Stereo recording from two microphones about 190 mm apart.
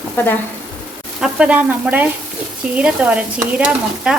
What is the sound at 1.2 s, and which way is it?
Stir, 5° right (ahead or behind).